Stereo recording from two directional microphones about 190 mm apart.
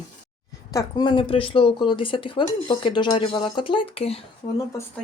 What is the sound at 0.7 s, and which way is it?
Speech, 20° left (ahead or behind).